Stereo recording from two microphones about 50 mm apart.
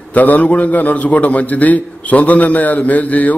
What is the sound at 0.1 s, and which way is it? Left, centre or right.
A man's voice, left.